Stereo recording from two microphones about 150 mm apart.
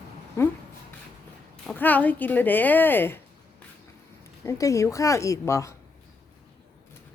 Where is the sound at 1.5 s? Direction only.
10° left (ahead or behind).